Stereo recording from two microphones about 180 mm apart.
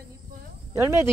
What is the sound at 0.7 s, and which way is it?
Speech, 15° right (ahead or behind).